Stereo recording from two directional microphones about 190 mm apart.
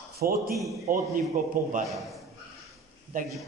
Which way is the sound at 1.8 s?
Centre (ahead or behind).